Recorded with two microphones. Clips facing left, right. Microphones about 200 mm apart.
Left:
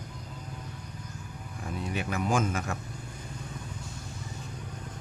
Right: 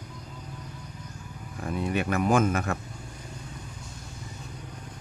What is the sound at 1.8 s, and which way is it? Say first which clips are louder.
Speech: right 6 dB; 60° right (ahead or behind).